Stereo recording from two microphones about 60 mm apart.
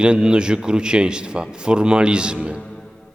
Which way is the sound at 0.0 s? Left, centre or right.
Centre.